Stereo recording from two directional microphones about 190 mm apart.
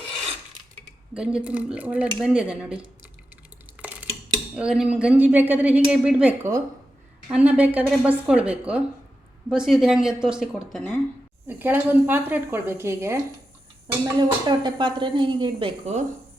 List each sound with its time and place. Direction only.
1.1 s speech: 5° right (ahead or behind)
4.5 s a woman's voice: 5° right (ahead or behind)
11.4 s a woman's voice: 10° right (ahead or behind); by 16.0 s 25° right (ahead or behind)